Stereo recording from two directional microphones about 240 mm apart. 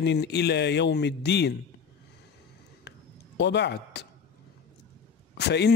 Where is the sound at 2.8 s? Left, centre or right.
Left.